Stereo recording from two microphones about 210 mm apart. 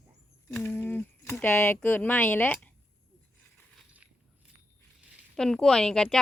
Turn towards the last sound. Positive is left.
turn(degrees=0)  # may be behind; listen again after turning